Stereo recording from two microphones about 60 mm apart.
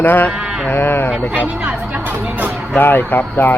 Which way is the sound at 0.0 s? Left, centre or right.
Left.